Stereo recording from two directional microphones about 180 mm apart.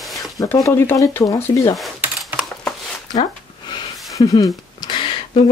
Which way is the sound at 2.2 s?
Centre (ahead or behind).